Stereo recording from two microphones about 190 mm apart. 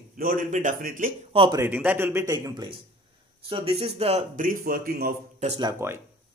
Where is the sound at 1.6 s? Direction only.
10° right (ahead or behind); by 5.1 s 50° right (ahead or behind).